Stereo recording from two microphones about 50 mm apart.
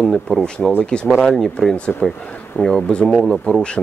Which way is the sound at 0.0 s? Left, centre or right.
Centre.